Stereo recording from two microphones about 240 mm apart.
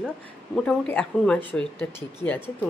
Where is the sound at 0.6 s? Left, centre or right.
Centre.